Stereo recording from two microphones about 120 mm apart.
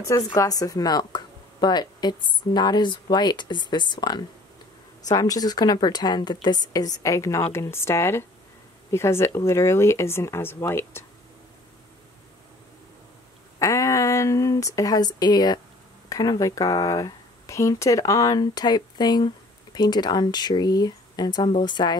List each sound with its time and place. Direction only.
0.0 s speech: 25° left (ahead or behind)
13.6 s a sound: 25° left (ahead or behind)
16.1 s speech: 30° left (ahead or behind)